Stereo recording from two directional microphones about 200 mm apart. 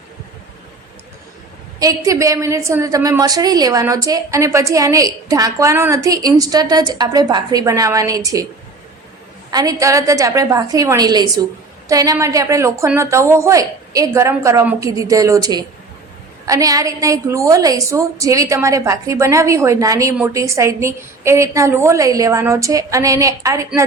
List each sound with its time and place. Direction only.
1.8 s a woman's voice: 15° right (ahead or behind)
9.5 s a woman's voice: 20° right (ahead or behind)